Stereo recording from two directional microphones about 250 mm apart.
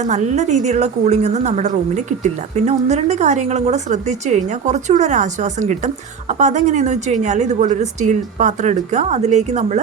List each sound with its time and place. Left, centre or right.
0.0 s a woman's voice: right